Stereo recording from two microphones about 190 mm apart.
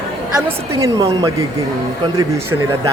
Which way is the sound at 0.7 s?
15° right (ahead or behind).